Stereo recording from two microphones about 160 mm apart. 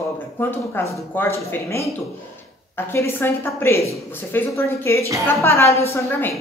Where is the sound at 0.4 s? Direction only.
15° left (ahead or behind).